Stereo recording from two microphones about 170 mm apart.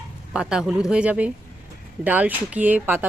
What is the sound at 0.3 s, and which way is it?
A woman's voice, 5° right (ahead or behind).